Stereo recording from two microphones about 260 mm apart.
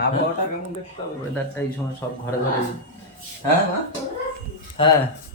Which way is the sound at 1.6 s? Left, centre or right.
Centre.